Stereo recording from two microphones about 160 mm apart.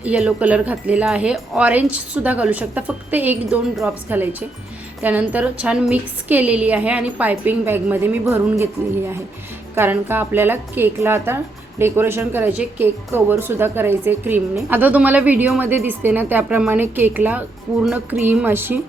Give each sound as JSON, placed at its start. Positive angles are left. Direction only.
{"t": 0.0, "sound": "speech", "side_deg": -5}